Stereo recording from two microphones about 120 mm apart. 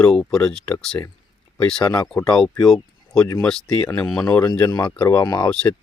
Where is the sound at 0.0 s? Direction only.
5° left (ahead or behind).